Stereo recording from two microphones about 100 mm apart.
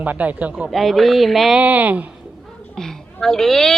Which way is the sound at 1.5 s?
15° right (ahead or behind).